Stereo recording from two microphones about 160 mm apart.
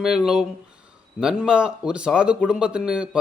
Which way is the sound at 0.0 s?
5° right (ahead or behind).